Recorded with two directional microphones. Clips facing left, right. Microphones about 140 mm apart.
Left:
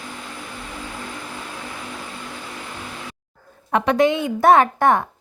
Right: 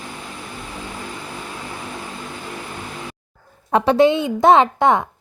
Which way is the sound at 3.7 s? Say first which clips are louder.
Right 3 dB; 30° right (ahead or behind).